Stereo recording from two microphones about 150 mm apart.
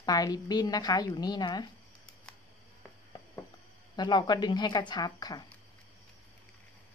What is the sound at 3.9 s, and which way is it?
A woman's voice, 30° left (ahead or behind).